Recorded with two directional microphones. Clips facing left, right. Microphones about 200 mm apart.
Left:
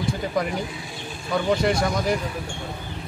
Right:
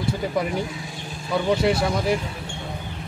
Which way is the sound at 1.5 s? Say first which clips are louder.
Right 1 dB; 5° right (ahead or behind).